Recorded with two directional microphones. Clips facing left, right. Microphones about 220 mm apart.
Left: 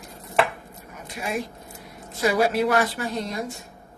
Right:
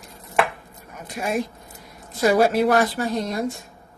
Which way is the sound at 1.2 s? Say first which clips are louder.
Right 4 dB; 50° right (ahead or behind).